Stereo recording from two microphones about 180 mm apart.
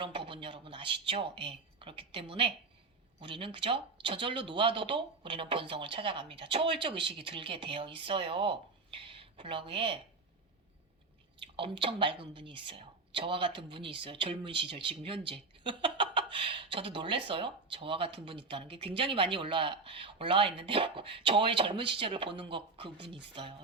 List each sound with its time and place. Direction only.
0.0 s speech: 30° right (ahead or behind)
11.5 s speech: 30° right (ahead or behind)